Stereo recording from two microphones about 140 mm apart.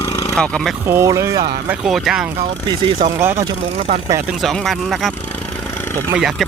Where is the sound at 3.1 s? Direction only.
20° right (ahead or behind).